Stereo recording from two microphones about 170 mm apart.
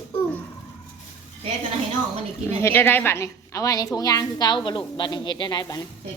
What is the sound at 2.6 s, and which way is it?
A woman's voice, 15° left (ahead or behind).